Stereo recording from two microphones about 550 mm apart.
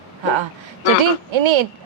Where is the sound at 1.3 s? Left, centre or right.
Right.